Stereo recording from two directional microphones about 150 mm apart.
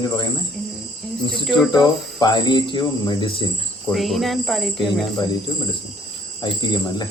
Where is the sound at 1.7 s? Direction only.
30° left (ahead or behind).